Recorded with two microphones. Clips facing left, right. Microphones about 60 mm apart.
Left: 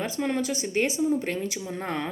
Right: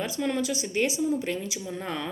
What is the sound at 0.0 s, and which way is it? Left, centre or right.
Speech, left.